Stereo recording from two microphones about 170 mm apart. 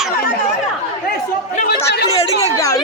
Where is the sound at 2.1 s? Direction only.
20° left (ahead or behind).